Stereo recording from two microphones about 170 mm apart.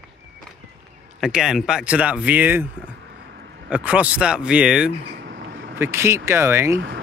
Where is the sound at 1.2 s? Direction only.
5° right (ahead or behind).